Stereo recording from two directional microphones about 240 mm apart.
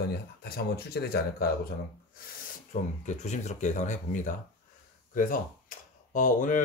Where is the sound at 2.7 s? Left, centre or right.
Left.